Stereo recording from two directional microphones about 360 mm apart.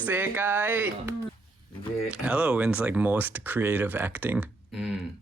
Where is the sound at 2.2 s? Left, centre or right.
Centre.